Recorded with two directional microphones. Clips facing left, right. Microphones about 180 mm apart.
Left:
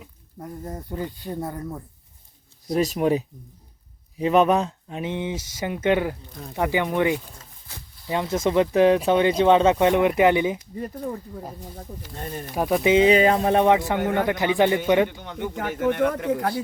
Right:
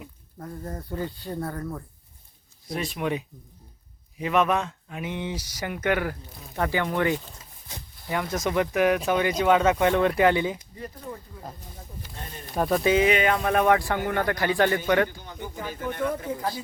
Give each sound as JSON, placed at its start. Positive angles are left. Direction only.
{"t": 0.3, "sound": "speech", "side_deg": 20}
{"t": 2.7, "sound": "speech", "side_deg": 40}
{"t": 12.2, "sound": "speech", "side_deg": 45}
{"t": 12.5, "sound": "speech", "side_deg": 10}
{"t": 15.2, "sound": "speech", "side_deg": 70}